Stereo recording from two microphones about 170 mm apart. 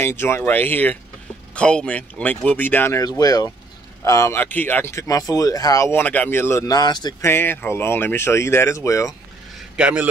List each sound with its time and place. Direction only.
0.0 s speech: 15° left (ahead or behind)
9.8 s a man's voice: 5° right (ahead or behind)